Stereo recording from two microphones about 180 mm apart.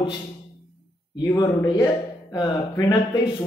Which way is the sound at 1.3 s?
20° left (ahead or behind).